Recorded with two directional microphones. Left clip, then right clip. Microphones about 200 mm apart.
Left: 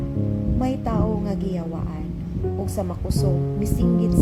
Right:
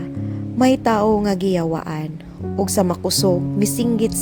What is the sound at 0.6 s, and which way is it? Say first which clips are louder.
Speech: right 11 dB; 40° right (ahead or behind).